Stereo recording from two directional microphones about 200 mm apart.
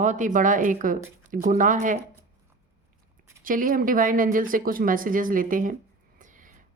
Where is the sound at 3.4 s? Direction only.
45° right (ahead or behind).